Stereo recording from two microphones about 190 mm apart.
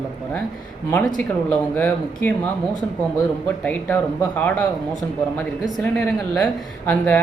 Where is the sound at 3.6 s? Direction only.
10° left (ahead or behind).